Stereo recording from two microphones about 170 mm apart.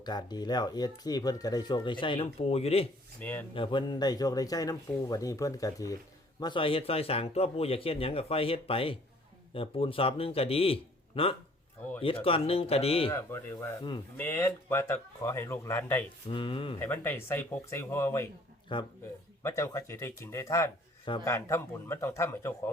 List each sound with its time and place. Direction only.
0.0 s speech: 25° left (ahead or behind)
3.2 s speech: 10° left (ahead or behind)
3.5 s speech: 30° left (ahead or behind)
14.2 s speech: 15° left (ahead or behind)
16.3 s speech: 30° left (ahead or behind)
16.7 s speech: 15° left (ahead or behind)
18.7 s speech: 30° left (ahead or behind)
19.4 s speech: 15° left (ahead or behind)